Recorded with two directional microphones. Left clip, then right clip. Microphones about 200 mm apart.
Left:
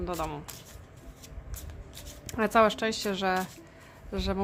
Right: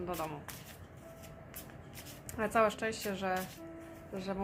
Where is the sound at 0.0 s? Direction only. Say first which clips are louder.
Left 5 dB; 30° left (ahead or behind).